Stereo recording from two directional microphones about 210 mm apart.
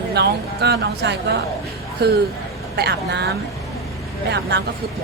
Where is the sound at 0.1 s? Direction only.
50° right (ahead or behind).